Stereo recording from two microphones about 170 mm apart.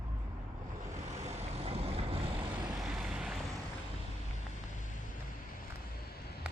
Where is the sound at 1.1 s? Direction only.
40° right (ahead or behind).